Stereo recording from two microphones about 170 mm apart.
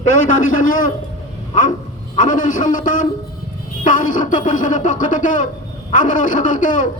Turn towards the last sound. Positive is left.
turn(degrees=50)  # may be behind; listen again after turning